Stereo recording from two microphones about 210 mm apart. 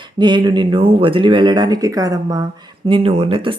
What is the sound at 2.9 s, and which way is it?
Speech, 25° right (ahead or behind).